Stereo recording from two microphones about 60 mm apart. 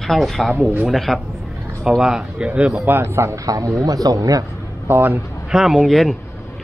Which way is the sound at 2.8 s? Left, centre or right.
Right.